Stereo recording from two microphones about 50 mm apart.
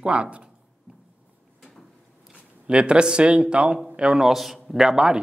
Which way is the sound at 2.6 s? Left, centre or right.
Right.